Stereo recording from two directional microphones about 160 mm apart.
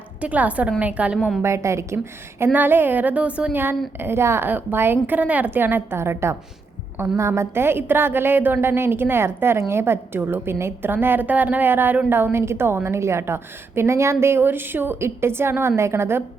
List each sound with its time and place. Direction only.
0.2 s a woman's voice: 10° right (ahead or behind)